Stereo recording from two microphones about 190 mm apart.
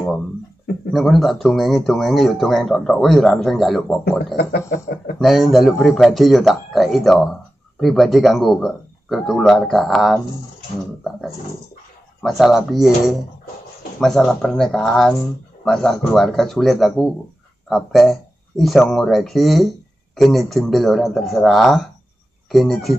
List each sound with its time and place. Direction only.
0.9 s speech: centre (ahead or behind)
4.4 s a sound: 55° left (ahead or behind)
5.2 s speech: centre (ahead or behind)
12.2 s speech: centre (ahead or behind)